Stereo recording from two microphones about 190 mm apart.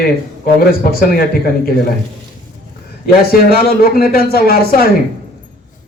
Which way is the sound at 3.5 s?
50° left (ahead or behind).